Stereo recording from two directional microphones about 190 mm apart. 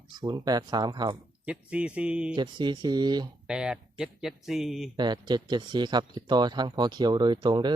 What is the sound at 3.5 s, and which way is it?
Speech, 5° right (ahead or behind).